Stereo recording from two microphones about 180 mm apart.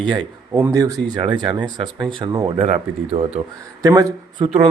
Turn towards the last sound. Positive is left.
turn(degrees=-30)  # may be behind; listen again after turning